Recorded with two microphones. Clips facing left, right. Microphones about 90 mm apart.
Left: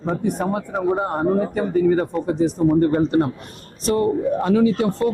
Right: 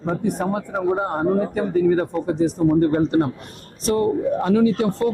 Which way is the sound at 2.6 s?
30° left (ahead or behind).